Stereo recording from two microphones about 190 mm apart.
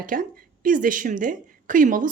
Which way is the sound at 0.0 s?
45° right (ahead or behind).